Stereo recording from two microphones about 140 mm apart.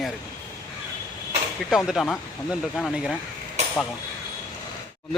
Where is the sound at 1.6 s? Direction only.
5° right (ahead or behind).